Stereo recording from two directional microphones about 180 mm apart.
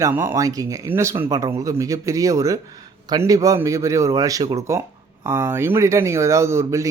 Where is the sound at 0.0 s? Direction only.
10° right (ahead or behind).